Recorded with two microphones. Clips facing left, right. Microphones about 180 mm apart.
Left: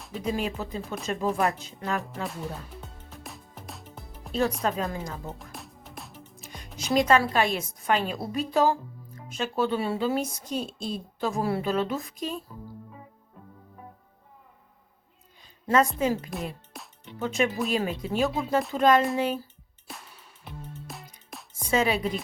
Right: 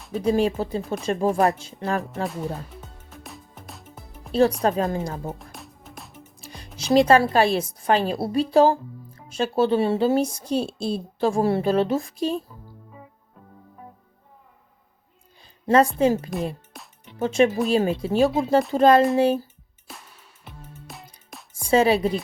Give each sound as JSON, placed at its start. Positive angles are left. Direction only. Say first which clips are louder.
{"t": 0.3, "sound": "a woman's voice", "louder": "right 8 dB", "side_deg": -30}
{"t": 2.8, "sound": "music", "louder": "right 1 dB", "side_deg": 0}
{"t": 4.3, "sound": "a woman's voice", "louder": "right 7 dB", "side_deg": -30}
{"t": 5.4, "sound": "music", "louder": "right 1 dB", "side_deg": 0}
{"t": 6.4, "sound": "music", "louder": "right 3 dB", "side_deg": -30}
{"t": 6.9, "sound": "a woman's voice", "louder": "right 5 dB", "side_deg": -30}
{"t": 15.6, "sound": "a woman's voice", "louder": "right 5 dB", "side_deg": -30}
{"t": 16.3, "sound": "speech", "louder": "right 6 dB", "side_deg": 0}
{"t": 17.2, "sound": "a woman's voice", "louder": "right 7 dB", "side_deg": -30}
{"t": 20.4, "sound": "music", "louder": "left 3 dB", "side_deg": 0}
{"t": 21.7, "sound": "a woman's voice", "louder": "right 7 dB", "side_deg": -30}